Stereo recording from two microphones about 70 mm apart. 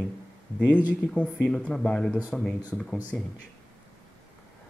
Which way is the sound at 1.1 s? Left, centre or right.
Centre.